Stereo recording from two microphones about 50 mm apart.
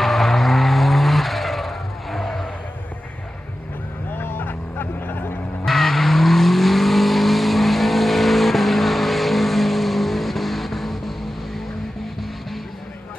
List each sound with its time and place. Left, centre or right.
0.0 s vehicle: centre
4.1 s vehicle: left
5.7 s vehicle: centre